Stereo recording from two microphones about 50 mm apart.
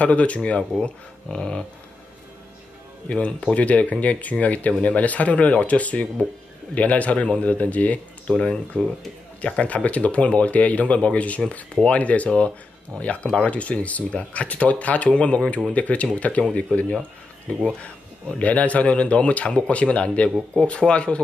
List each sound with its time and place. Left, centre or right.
0.0 s speech: left
3.1 s speech: left
8.4 s speech: centre
18.4 s speech: left